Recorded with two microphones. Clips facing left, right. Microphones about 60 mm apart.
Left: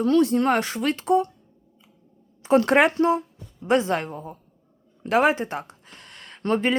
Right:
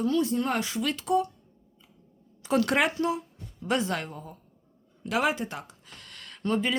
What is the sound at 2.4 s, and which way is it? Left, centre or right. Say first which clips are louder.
Speech: left 7 dB; left.